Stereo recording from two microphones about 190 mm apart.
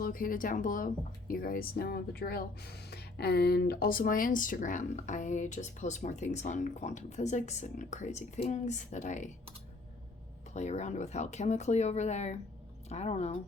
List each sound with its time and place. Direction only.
0.0 s speech: 45° left (ahead or behind)
10.5 s speech: 35° left (ahead or behind)